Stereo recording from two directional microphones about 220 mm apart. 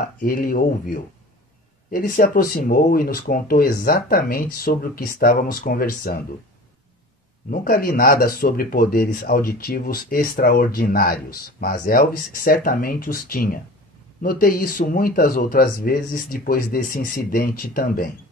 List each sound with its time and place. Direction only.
0.2 s speech: 40° left (ahead or behind)
7.5 s speech: 40° left (ahead or behind)